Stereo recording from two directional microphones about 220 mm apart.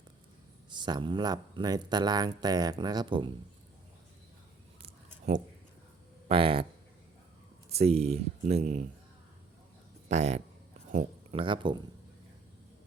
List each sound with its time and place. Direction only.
0.7 s speech: 20° right (ahead or behind)
6.2 s speech: 25° right (ahead or behind)
7.7 s speech: 30° right (ahead or behind)
10.1 s speech: 30° right (ahead or behind)